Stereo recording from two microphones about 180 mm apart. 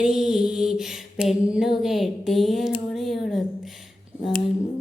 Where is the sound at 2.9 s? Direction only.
Centre (ahead or behind).